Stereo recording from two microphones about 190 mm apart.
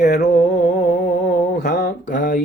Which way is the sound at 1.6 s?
60° left (ahead or behind).